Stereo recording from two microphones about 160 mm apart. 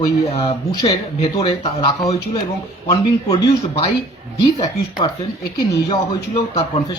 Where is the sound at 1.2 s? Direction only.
35° left (ahead or behind).